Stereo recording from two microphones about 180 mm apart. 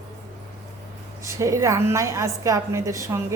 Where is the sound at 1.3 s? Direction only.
15° right (ahead or behind).